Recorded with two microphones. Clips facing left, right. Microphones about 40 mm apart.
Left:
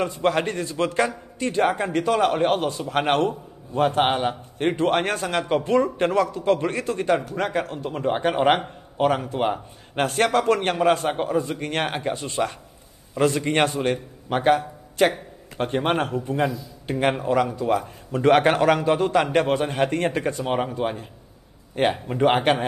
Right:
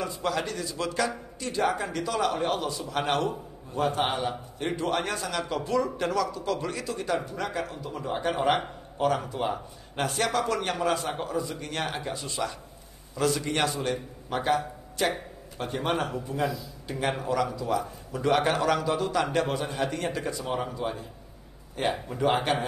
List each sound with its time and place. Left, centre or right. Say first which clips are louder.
0.0 s a man's voice: left 7 dB; left